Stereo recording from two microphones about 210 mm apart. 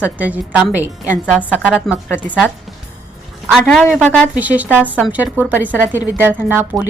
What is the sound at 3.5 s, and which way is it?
Speech, centre (ahead or behind).